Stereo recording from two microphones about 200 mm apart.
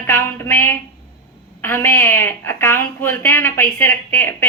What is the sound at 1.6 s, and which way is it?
Speech, 10° left (ahead or behind).